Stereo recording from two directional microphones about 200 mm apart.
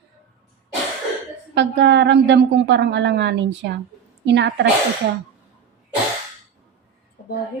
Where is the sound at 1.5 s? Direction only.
60° right (ahead or behind).